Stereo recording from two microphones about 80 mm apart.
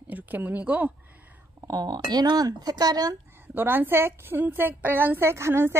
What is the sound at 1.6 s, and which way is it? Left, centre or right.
Speech, right.